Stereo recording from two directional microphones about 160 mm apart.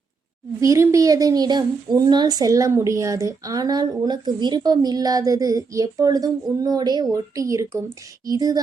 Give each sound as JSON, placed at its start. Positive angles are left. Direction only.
{"t": 0.6, "sound": "a woman's voice", "side_deg": -20}